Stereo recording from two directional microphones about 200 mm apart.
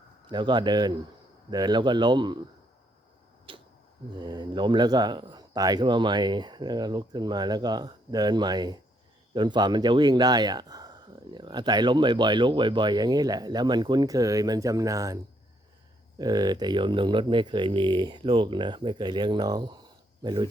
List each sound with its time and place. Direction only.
0.3 s speech: 25° right (ahead or behind)
3.5 s a sound: 25° right (ahead or behind)
4.1 s speech: 20° right (ahead or behind)